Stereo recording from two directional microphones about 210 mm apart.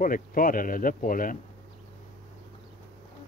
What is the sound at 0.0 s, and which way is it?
Speech, 40° left (ahead or behind).